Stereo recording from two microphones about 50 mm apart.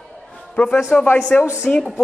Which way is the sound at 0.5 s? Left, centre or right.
Left.